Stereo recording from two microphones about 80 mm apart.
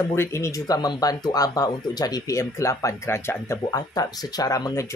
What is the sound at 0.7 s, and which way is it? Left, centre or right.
Speech, left.